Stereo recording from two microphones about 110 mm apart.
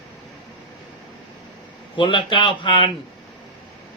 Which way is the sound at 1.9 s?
50° left (ahead or behind).